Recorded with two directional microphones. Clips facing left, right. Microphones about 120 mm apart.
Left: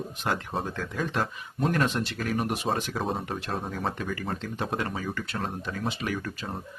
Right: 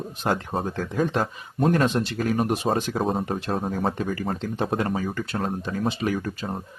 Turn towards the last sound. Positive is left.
turn(degrees=-35)  # may be behind; listen again after turning